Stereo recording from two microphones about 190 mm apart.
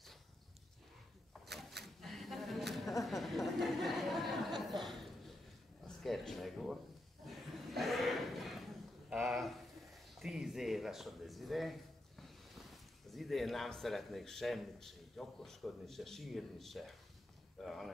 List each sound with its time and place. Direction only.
1.4 s wild animals: centre (ahead or behind)
2.0 s a sound: centre (ahead or behind)
12.2 s speech: centre (ahead or behind)
17.6 s walk: centre (ahead or behind)